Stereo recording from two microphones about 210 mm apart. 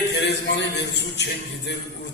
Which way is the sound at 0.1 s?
55° left (ahead or behind).